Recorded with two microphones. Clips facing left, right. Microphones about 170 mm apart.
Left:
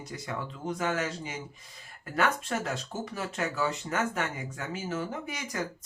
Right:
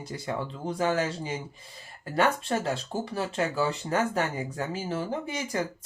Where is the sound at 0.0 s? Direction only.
30° right (ahead or behind).